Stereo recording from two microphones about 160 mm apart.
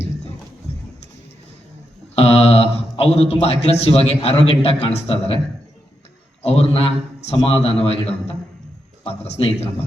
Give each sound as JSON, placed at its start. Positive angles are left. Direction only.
{"t": 2.1, "sound": "a sound", "side_deg": 40}
{"t": 3.4, "sound": "a man's voice", "side_deg": 40}
{"t": 6.4, "sound": "a man's voice", "side_deg": 40}